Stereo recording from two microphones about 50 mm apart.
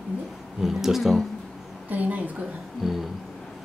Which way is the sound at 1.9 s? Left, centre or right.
Right.